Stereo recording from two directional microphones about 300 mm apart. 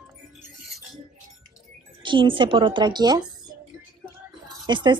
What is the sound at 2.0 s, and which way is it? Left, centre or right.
Speech, centre.